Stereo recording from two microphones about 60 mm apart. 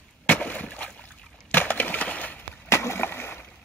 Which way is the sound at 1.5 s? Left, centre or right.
Left.